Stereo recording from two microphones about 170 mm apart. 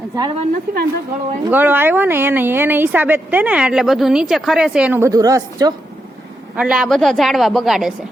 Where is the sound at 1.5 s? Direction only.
10° right (ahead or behind).